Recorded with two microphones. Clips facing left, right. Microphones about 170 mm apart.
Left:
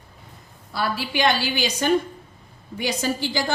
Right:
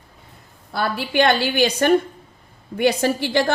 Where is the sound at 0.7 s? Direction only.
55° right (ahead or behind).